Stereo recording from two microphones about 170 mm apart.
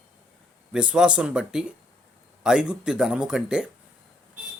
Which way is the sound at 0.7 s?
5° right (ahead or behind).